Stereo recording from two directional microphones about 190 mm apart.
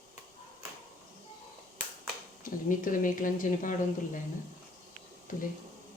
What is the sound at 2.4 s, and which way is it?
A woman's voice, 45° left (ahead or behind).